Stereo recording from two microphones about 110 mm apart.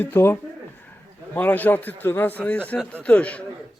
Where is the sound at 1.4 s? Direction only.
15° left (ahead or behind).